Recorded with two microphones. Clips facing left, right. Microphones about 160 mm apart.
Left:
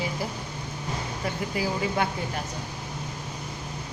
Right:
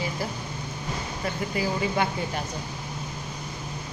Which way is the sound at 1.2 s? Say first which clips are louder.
Right 1 dB; 5° left (ahead or behind).